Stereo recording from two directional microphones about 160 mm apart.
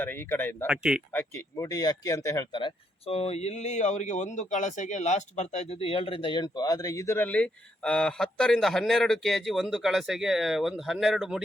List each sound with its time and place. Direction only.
0.0 s speech: 15° left (ahead or behind)
0.7 s speech: 5° right (ahead or behind)
1.1 s speech: 15° left (ahead or behind); by 11.4 s centre (ahead or behind)